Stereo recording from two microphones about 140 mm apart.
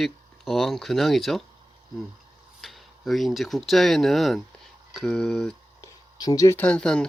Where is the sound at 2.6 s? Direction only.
Centre (ahead or behind).